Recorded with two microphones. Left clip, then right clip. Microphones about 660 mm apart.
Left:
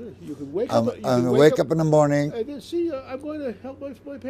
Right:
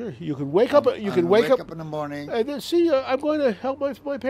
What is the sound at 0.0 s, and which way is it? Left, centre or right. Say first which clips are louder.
A man's voice: right 6 dB; right.